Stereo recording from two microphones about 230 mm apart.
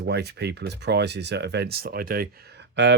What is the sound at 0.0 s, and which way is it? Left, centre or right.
Speech, right.